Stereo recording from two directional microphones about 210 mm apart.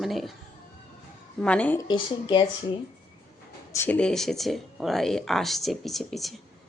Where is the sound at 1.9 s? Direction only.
20° left (ahead or behind).